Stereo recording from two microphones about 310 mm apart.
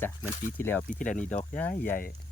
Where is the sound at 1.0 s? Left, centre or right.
Left.